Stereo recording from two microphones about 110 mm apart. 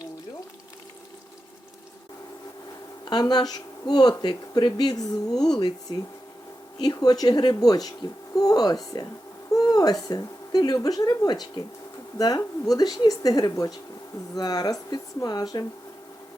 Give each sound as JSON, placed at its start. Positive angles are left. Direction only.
{"t": 3.1, "sound": "speech", "side_deg": 40}